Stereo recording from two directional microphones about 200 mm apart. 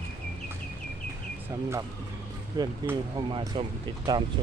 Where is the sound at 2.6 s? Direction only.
20° right (ahead or behind).